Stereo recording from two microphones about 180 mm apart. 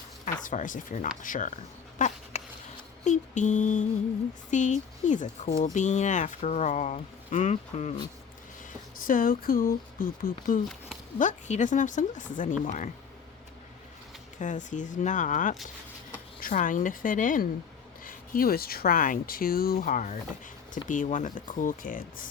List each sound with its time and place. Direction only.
0.4 s speech: 45° left (ahead or behind)
2.0 s dog: 45° left (ahead or behind)
3.0 s speech: 40° left (ahead or behind)
9.0 s speech: 50° left (ahead or behind)
14.3 s speech: 45° left (ahead or behind)